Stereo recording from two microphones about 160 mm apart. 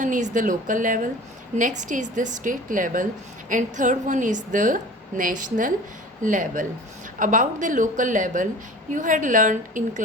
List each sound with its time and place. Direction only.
0.0 s a woman's voice: 50° right (ahead or behind)